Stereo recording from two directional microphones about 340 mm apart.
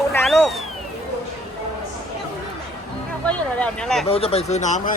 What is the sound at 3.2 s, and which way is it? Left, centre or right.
Speech, centre.